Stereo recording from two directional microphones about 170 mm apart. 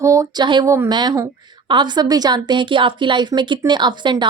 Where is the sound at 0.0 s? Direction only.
20° right (ahead or behind).